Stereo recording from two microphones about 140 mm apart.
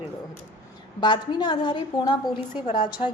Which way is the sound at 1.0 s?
30° left (ahead or behind).